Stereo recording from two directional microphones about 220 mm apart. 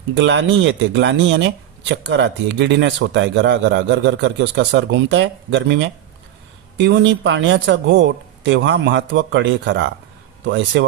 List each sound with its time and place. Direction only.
0.1 s a man's voice: 55° right (ahead or behind)